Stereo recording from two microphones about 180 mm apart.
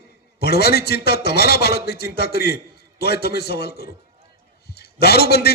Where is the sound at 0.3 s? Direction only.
60° left (ahead or behind).